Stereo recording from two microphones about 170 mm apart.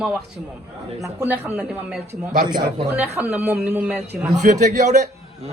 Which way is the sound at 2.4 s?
25° right (ahead or behind).